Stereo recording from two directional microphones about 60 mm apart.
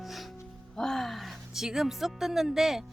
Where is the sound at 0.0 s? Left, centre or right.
Centre.